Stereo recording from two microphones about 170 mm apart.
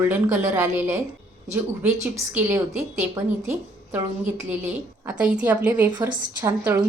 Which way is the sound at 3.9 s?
15° right (ahead or behind).